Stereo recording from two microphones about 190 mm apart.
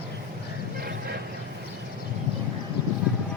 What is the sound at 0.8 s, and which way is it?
Vehicle, 55° right (ahead or behind).